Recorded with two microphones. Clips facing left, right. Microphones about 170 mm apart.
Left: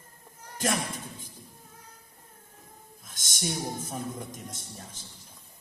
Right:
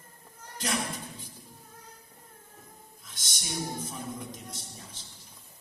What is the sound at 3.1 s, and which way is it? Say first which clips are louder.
A woman's voice: left 6 dB; 50° left (ahead or behind).